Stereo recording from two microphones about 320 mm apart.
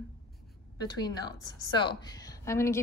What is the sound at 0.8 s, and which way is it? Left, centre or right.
A woman's voice, centre.